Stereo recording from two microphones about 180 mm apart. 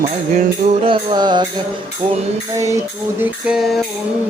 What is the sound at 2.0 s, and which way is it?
Speech, 40° right (ahead or behind).